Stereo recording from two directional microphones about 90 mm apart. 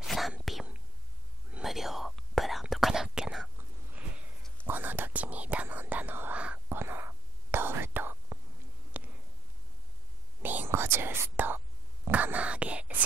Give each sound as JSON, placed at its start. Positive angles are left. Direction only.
{"t": 0.0, "sound": "whispering", "side_deg": 0}
{"t": 1.5, "sound": "whispering", "side_deg": -5}
{"t": 4.6, "sound": "whispering", "side_deg": -20}
{"t": 6.8, "sound": "whispering", "side_deg": -25}
{"t": 9.0, "sound": "a sound", "side_deg": -15}
{"t": 10.4, "sound": "whispering", "side_deg": -20}